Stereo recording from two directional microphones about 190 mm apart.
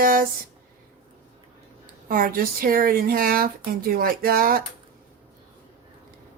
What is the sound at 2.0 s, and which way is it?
Speech, 50° right (ahead or behind).